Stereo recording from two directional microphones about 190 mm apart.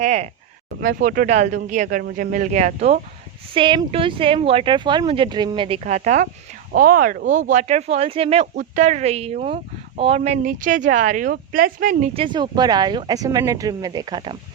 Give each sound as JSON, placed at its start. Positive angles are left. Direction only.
{"t": 0.0, "sound": "speech", "side_deg": -35}
{"t": 0.8, "sound": "speech", "side_deg": -50}